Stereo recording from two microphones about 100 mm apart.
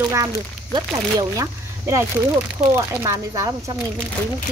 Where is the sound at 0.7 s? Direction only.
40° right (ahead or behind).